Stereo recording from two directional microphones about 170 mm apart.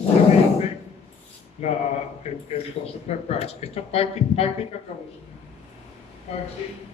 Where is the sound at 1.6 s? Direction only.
40° left (ahead or behind).